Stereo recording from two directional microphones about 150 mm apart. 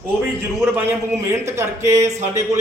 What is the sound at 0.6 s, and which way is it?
A man's voice, 15° right (ahead or behind).